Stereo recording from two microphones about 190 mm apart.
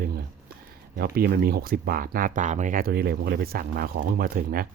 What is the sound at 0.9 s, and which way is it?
Speech, 55° right (ahead or behind).